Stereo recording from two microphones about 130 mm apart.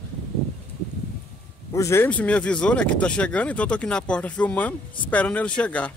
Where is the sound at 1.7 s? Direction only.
20° left (ahead or behind).